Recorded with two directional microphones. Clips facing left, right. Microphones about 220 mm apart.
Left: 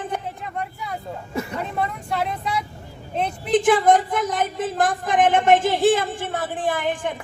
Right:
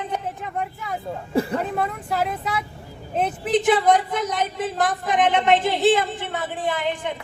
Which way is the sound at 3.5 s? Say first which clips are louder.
Left 2 dB; 45° left (ahead or behind).